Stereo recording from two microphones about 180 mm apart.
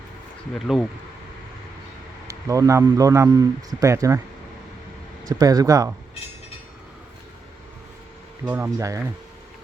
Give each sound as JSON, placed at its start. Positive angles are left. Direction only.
{"t": 0.5, "sound": "speech", "side_deg": 5}
{"t": 2.2, "sound": "speech", "side_deg": -20}
{"t": 5.2, "sound": "speech", "side_deg": -20}
{"t": 8.4, "sound": "speech", "side_deg": -10}